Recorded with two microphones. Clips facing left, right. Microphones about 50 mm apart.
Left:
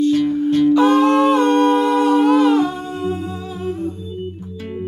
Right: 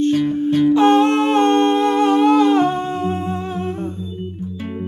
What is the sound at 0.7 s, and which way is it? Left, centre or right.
Humming, right.